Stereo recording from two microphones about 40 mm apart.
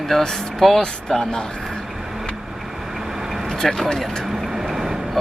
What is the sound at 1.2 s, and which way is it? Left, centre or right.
Speech, centre.